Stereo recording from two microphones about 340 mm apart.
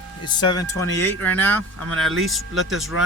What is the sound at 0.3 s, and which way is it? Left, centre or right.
Speech, centre.